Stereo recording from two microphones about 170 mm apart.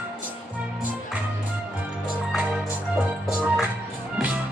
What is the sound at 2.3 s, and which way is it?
Music, centre (ahead or behind).